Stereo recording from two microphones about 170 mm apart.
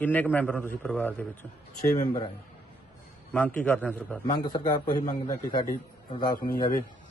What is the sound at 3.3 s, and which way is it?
Speech, 10° left (ahead or behind).